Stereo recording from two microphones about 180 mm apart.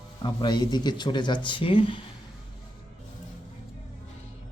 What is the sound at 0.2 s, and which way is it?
Speech, 25° left (ahead or behind).